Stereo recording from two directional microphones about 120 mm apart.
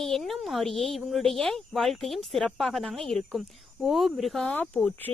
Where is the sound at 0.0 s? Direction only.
Centre (ahead or behind).